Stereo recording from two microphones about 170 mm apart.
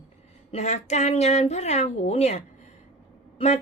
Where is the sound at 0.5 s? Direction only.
40° left (ahead or behind).